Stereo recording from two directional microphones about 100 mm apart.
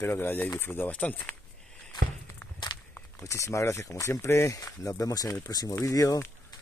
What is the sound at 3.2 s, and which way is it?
Speech, 30° left (ahead or behind).